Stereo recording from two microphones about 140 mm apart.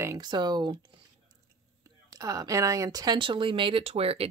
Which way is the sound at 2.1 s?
25° right (ahead or behind).